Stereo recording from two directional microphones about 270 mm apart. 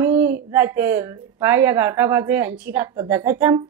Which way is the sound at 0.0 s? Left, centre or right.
Centre.